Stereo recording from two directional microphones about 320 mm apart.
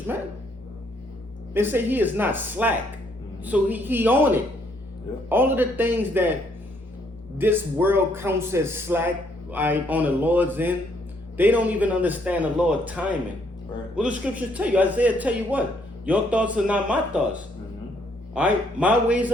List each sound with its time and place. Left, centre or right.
1.5 s a man's voice: centre
7.3 s a man's voice: centre